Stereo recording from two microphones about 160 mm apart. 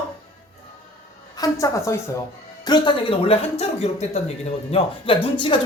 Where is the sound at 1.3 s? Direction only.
20° left (ahead or behind).